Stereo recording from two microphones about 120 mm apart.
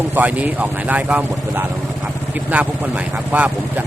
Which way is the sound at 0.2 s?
10° right (ahead or behind).